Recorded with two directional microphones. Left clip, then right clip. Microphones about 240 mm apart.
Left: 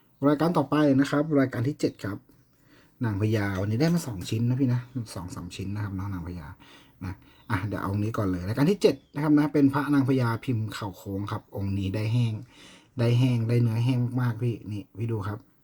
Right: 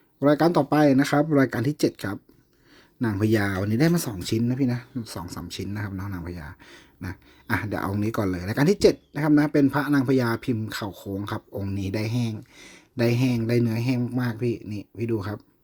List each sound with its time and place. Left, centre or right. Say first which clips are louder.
0.2 s speech: right 4 dB; right